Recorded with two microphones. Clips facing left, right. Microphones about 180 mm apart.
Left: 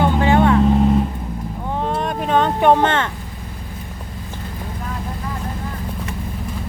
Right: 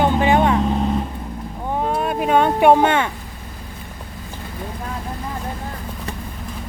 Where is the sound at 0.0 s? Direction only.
15° right (ahead or behind).